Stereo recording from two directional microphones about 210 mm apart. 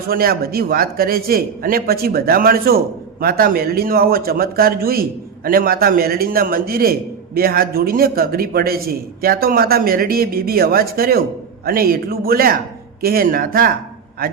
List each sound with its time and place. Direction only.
0.1 s a man's voice: 45° right (ahead or behind)